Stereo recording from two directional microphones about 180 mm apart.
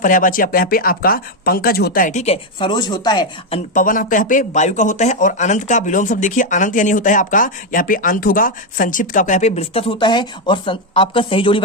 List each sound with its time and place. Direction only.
0.0 s speech: 50° left (ahead or behind); by 3.6 s 25° left (ahead or behind)
3.8 s speech: 45° left (ahead or behind); by 11.6 s 30° left (ahead or behind)